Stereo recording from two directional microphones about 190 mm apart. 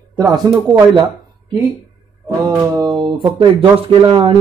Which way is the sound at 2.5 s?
15° right (ahead or behind).